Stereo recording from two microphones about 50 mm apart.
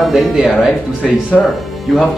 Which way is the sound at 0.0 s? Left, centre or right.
Centre.